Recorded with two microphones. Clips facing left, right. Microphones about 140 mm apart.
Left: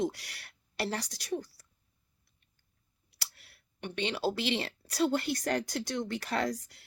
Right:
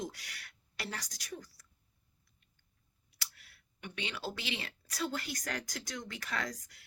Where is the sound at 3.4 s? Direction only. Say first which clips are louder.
Left 8 dB; 30° left (ahead or behind).